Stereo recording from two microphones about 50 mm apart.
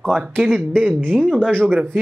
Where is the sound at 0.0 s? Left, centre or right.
Centre.